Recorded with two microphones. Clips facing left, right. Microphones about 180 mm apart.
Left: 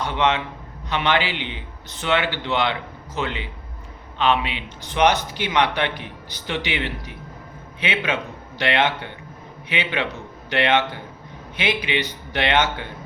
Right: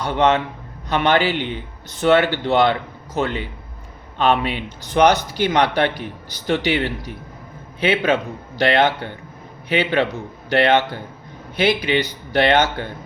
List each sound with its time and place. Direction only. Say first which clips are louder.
0.0 s a man's voice: right 4 dB; 45° right (ahead or behind)